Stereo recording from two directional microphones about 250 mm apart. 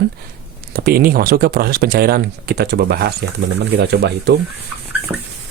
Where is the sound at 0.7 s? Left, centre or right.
Right.